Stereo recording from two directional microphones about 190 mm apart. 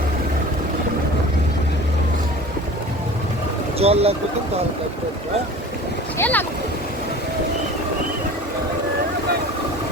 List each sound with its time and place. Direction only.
3.8 s speech: 30° right (ahead or behind)
6.1 s speech: 10° left (ahead or behind)